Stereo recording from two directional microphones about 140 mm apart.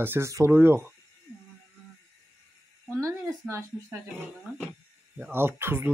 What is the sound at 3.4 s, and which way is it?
Speech, 20° right (ahead or behind).